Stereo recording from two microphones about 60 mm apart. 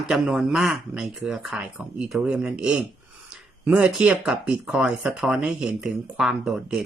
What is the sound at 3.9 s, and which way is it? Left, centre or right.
Speech, centre.